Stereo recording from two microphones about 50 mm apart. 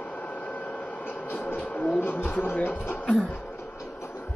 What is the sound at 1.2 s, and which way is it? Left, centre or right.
Vehicle, left.